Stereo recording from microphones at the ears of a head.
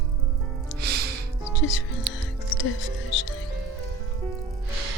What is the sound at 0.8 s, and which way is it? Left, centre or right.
Music, right.